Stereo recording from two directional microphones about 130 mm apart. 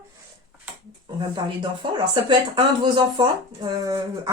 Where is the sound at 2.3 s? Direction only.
35° right (ahead or behind).